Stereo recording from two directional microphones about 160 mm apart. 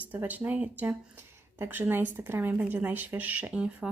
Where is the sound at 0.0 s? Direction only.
10° right (ahead or behind).